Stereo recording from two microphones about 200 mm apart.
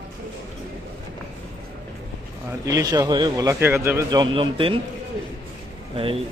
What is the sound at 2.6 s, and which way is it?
Speech, 20° right (ahead or behind).